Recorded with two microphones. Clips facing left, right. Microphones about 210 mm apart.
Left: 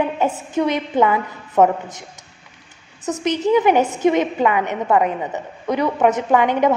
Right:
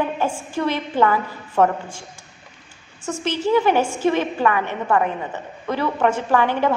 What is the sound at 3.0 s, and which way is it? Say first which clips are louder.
A woman's voice: left 3 dB; 20° left (ahead or behind).